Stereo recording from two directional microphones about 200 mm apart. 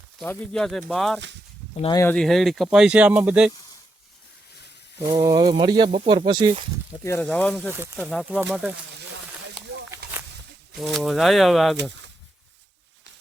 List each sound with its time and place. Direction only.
0.2 s speech: 5° left (ahead or behind)
1.8 s speech: 15° left (ahead or behind)
2.1 s speech: centre (ahead or behind)
4.9 s speech: 20° right (ahead or behind)
7.0 s speech: 10° left (ahead or behind)
7.7 s speech: 10° right (ahead or behind)
8.0 s speech: centre (ahead or behind)
9.9 s snake: 15° right (ahead or behind)
10.8 s speech: centre (ahead or behind)